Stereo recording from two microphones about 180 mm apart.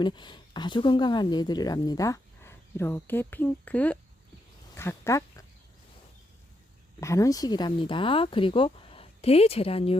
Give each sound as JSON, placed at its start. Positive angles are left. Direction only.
{"t": 0.0, "sound": "speech", "side_deg": 25}
{"t": 7.0, "sound": "speech", "side_deg": 15}